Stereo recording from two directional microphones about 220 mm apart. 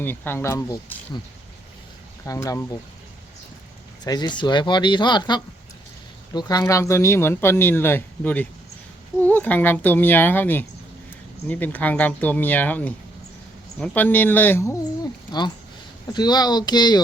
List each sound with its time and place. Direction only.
0.0 s speech: 10° left (ahead or behind)
2.2 s speech: 15° left (ahead or behind)
4.0 s speech: 20° left (ahead or behind)